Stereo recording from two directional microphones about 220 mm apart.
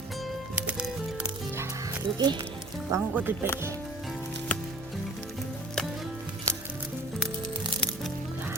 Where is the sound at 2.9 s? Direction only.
10° right (ahead or behind).